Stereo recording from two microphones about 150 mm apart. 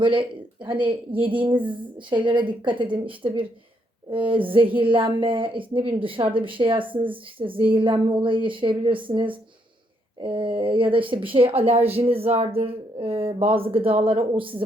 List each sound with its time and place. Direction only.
0.0 s speech: 35° right (ahead or behind)